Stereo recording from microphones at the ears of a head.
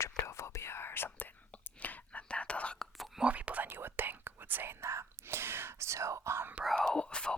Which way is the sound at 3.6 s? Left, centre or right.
Right.